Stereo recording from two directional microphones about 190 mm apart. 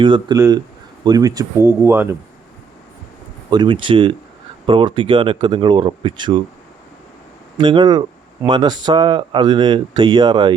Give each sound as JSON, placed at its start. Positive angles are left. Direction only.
{"t": 0.0, "sound": "speech", "side_deg": -25}
{"t": 3.5, "sound": "speech", "side_deg": -25}
{"t": 7.5, "sound": "speech", "side_deg": -25}